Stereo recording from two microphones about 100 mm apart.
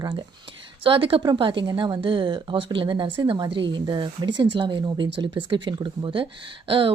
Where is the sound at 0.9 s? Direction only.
60° right (ahead or behind).